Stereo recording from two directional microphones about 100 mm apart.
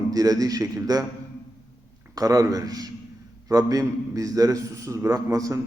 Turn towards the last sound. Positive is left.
turn(degrees=-35)  # may be behind; listen again after turning